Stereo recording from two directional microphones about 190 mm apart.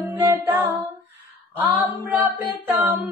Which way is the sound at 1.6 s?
10° right (ahead or behind).